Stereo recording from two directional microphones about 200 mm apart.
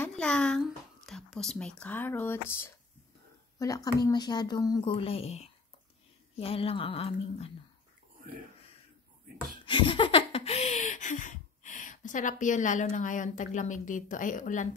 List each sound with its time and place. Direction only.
0.0 s a sound: 5° left (ahead or behind)
1.0 s speech: 5° left (ahead or behind); by 7.5 s 30° left (ahead or behind)
9.7 s laughter: 25° left (ahead or behind); by 14.7 s 40° left (ahead or behind)